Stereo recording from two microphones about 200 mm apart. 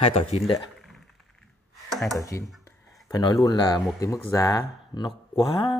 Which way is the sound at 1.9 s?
Centre (ahead or behind).